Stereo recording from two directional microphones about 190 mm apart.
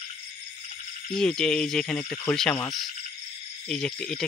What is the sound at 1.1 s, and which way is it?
Speech, 5° left (ahead or behind).